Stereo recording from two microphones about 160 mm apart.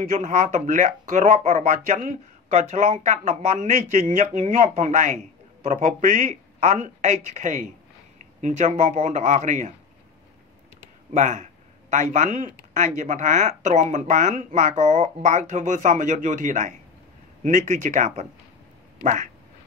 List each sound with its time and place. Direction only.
0.1 s speech: 50° right (ahead or behind)
11.1 s speech: 50° right (ahead or behind)